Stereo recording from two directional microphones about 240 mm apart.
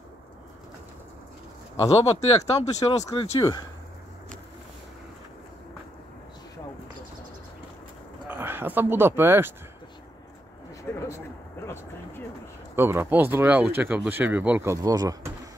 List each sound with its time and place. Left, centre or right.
2.1 s speech: left
8.3 s speech: centre
10.9 s a sound: centre
12.7 s speech: centre